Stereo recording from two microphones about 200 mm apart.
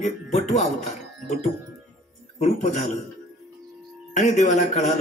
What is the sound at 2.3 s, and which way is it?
Speech, 35° left (ahead or behind).